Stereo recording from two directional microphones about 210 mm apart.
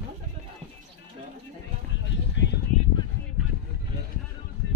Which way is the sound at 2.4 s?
60° left (ahead or behind).